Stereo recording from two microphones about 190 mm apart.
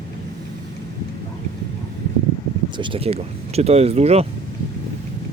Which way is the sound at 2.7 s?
25° right (ahead or behind).